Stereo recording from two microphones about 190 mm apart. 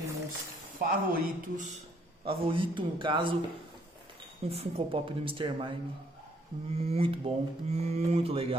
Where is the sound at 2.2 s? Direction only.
30° right (ahead or behind).